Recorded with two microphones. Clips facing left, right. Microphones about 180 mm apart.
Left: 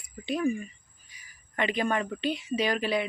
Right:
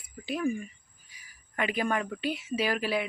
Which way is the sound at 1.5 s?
5° right (ahead or behind).